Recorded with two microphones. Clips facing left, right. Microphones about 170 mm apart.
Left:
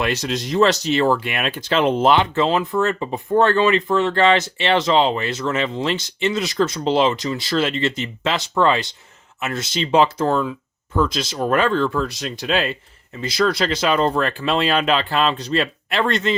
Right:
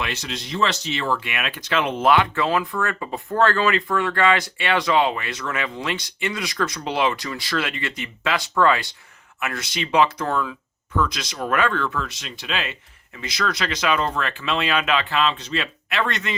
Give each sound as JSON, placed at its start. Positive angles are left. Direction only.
{"t": 0.0, "sound": "speech", "side_deg": 40}